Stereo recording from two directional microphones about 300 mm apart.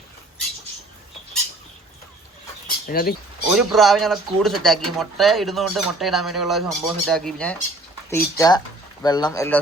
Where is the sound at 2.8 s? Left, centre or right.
Left.